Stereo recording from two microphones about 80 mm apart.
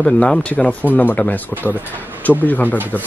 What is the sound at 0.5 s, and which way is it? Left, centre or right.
Speech, left.